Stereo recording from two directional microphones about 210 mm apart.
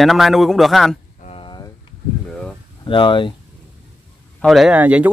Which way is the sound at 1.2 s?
25° left (ahead or behind).